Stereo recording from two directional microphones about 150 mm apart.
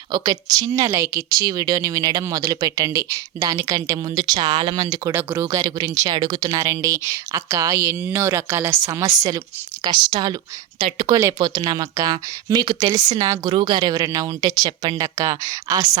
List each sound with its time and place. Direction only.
0.1 s a woman's voice: 25° right (ahead or behind)
11.1 s a woman's voice: 25° right (ahead or behind)